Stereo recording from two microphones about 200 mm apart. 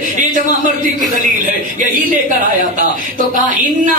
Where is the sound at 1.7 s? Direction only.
40° right (ahead or behind).